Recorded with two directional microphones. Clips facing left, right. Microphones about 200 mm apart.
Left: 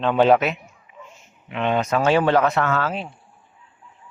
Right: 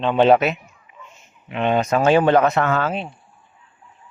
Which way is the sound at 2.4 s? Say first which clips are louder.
Right 2 dB; 25° right (ahead or behind).